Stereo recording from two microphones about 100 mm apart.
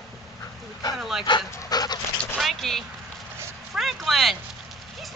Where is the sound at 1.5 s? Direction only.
40° left (ahead or behind).